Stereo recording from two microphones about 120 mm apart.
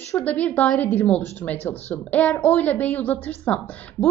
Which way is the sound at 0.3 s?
15° left (ahead or behind).